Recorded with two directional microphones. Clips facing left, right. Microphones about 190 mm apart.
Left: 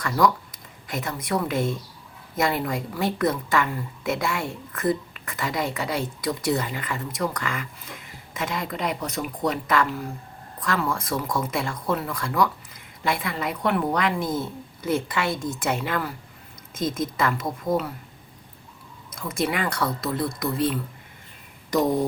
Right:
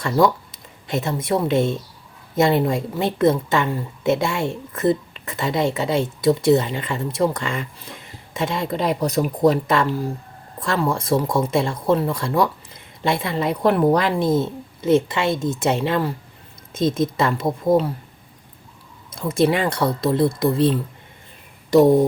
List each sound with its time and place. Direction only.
0.0 s a woman's voice: 25° right (ahead or behind)
19.1 s a woman's voice: 30° right (ahead or behind)